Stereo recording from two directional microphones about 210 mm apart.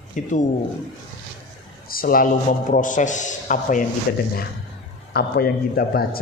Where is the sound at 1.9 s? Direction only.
45° left (ahead or behind).